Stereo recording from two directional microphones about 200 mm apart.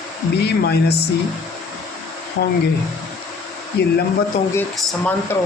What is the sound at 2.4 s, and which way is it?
Speech, 55° left (ahead or behind).